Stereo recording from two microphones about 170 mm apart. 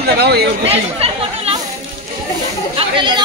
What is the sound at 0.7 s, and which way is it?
Speech, 35° right (ahead or behind).